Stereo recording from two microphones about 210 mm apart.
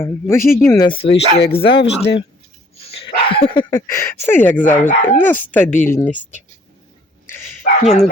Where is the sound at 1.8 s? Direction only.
55° left (ahead or behind).